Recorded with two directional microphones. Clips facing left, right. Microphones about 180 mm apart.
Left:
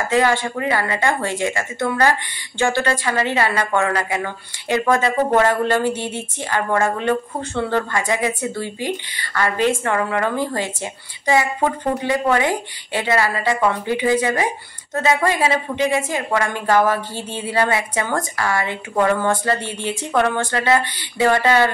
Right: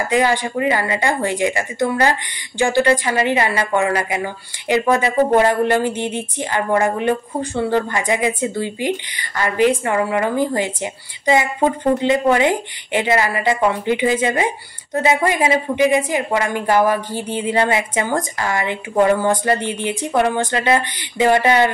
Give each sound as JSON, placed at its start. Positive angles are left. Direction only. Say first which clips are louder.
{"t": 0.1, "sound": "a woman's voice", "louder": "even", "side_deg": -15}